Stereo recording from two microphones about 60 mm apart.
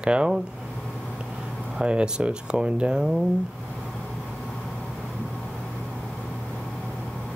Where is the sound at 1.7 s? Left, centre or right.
Centre.